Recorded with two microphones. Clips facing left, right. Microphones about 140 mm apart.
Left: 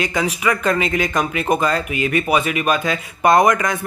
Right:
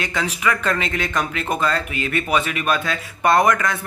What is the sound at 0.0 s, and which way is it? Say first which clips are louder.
Speech: left 3 dB; 10° left (ahead or behind).